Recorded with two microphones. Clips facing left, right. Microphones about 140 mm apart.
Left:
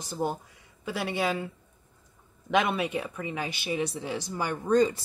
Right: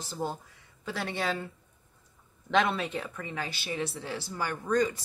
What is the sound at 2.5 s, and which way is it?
Speech, 10° left (ahead or behind).